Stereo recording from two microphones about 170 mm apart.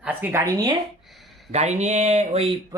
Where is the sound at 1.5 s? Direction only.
40° right (ahead or behind).